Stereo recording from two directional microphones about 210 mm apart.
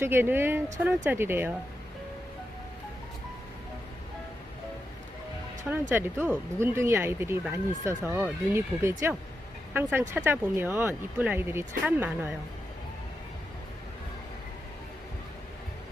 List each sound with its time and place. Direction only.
0.0 s speech: 10° right (ahead or behind)
5.9 s speech: 10° right (ahead or behind)